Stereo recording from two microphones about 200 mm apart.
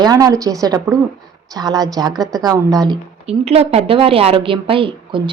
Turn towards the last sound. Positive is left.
turn(degrees=-25)  # may be behind; listen again after turning